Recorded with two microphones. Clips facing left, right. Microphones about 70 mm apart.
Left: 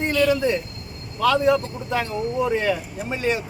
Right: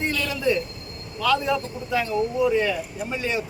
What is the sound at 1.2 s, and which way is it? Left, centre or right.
A man's voice, left.